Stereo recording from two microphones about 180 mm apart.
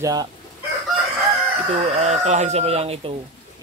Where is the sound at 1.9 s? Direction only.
40° right (ahead or behind).